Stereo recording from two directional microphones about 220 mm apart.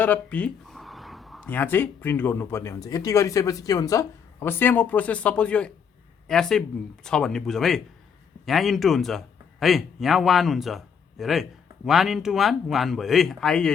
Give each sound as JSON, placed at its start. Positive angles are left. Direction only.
{"t": 0.0, "sound": "a man's voice", "side_deg": 5}